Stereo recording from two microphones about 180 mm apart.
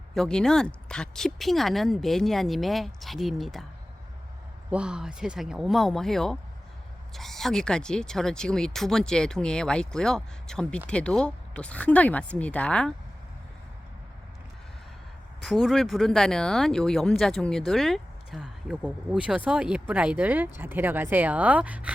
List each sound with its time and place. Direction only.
0.1 s speech: 5° left (ahead or behind)
4.7 s speech: 5° right (ahead or behind)
15.4 s speech: centre (ahead or behind)